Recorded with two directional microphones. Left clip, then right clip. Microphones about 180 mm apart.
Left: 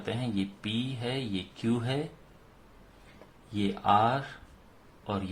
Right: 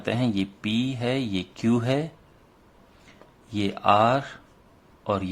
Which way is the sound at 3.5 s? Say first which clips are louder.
Right 5 dB; 35° right (ahead or behind).